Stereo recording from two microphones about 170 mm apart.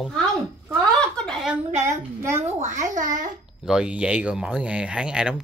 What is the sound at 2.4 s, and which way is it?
Speech, 45° right (ahead or behind).